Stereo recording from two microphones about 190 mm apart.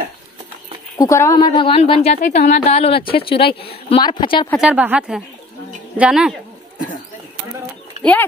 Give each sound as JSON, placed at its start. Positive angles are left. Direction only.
{"t": 0.9, "sound": "a woman's voice", "side_deg": 15}
{"t": 4.6, "sound": "speech", "side_deg": -5}
{"t": 8.0, "sound": "speech", "side_deg": 5}